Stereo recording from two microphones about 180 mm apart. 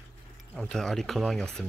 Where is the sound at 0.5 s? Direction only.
5° left (ahead or behind).